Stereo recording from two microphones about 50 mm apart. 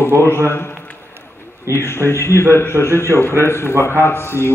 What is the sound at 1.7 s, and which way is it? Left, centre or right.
A man's voice, left.